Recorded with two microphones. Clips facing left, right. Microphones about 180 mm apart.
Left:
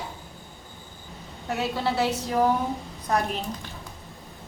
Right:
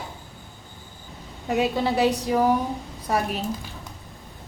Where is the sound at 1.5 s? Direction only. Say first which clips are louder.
Right 4 dB; 15° right (ahead or behind).